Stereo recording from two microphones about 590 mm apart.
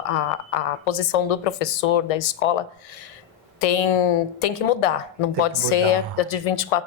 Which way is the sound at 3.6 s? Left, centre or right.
Left.